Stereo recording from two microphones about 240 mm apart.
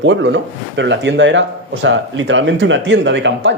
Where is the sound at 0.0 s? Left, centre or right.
Right.